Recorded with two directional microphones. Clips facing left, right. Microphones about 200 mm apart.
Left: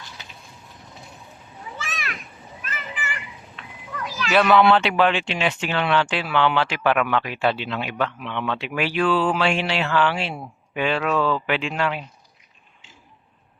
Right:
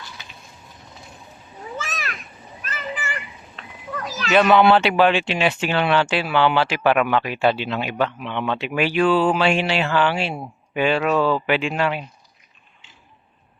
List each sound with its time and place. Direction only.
1.8 s a sound: 40° right (ahead or behind)
4.4 s speech: 25° right (ahead or behind)
4.8 s speech: 10° right (ahead or behind)